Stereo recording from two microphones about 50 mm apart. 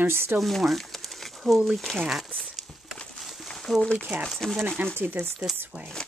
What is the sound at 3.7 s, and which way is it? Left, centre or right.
Speech, centre.